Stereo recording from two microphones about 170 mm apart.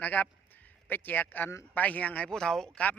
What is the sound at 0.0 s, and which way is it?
Speech, 10° left (ahead or behind).